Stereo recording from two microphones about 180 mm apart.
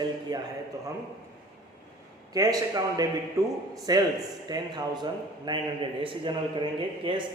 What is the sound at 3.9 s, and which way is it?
A man's voice, 20° right (ahead or behind).